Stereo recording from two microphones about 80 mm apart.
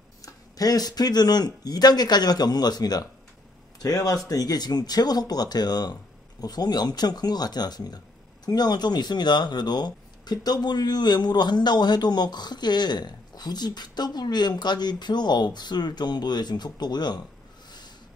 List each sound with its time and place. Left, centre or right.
0.2 s speech: left